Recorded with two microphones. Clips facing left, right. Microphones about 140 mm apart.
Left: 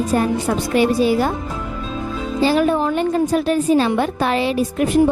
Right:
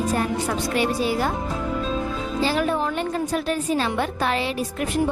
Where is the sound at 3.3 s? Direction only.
20° left (ahead or behind).